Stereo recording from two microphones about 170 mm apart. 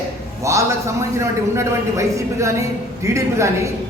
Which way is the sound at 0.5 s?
15° right (ahead or behind).